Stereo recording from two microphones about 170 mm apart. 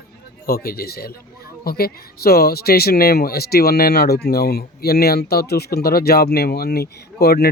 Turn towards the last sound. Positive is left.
turn(degrees=70)  # may be behind; listen again after turning